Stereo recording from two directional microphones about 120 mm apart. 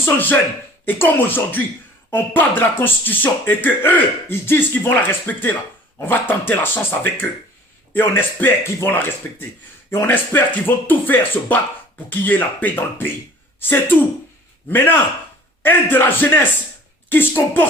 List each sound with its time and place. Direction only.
0.0 s speech: 15° left (ahead or behind)